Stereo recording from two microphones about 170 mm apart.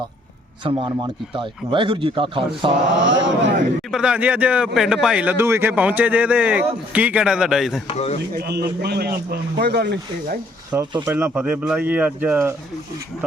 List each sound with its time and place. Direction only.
0.6 s a man's voice: 30° right (ahead or behind)
3.0 s speech: 90° right
3.9 s speech: 5° right (ahead or behind)
7.9 s speech: 40° left (ahead or behind)
8.4 s a man's voice: 70° right (ahead or behind)
10.7 s speech: 10° right (ahead or behind)